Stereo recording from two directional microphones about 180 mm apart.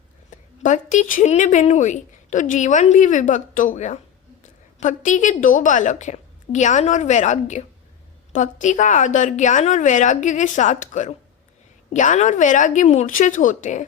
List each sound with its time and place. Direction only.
0.3 s a woman's voice: 45° left (ahead or behind)